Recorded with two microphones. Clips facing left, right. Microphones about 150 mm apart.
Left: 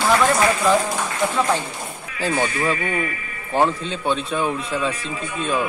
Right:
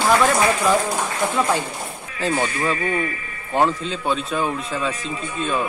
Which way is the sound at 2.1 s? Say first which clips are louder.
Even; 30° right (ahead or behind).